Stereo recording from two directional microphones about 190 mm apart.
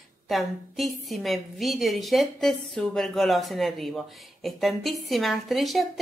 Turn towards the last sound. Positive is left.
turn(degrees=0)  # may be behind; listen again after turning